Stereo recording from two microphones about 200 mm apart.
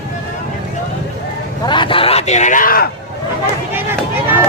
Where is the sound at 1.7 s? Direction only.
25° left (ahead or behind); by 2.9 s 45° left (ahead or behind).